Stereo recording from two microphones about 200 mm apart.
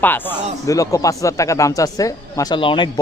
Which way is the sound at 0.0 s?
10° left (ahead or behind).